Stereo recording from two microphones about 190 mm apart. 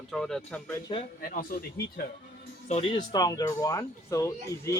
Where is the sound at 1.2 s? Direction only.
50° left (ahead or behind).